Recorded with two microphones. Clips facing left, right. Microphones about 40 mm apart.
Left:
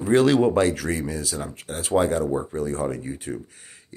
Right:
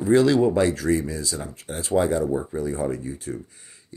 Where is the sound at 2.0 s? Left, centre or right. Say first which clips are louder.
Even; left.